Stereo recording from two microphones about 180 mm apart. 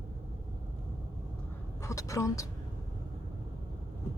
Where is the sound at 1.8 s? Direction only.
15° left (ahead or behind).